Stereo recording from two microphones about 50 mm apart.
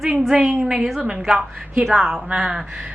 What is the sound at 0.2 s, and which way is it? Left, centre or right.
A woman's voice, centre.